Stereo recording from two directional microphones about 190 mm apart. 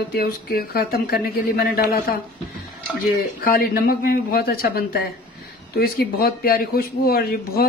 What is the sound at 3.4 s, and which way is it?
Speech, 50° left (ahead or behind).